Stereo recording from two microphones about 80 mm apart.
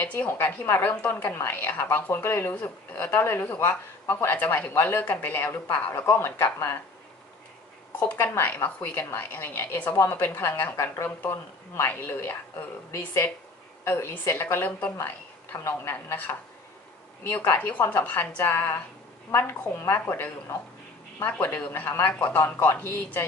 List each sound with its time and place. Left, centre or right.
0.0 s a woman's voice: centre
8.2 s a woman's voice: left